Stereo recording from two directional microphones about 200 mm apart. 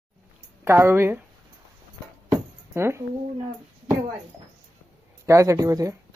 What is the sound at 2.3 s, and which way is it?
Music, 15° right (ahead or behind).